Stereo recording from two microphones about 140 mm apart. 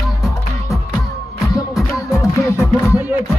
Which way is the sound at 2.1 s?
20° left (ahead or behind).